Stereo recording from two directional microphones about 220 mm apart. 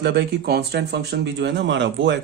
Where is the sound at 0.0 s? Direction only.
50° right (ahead or behind).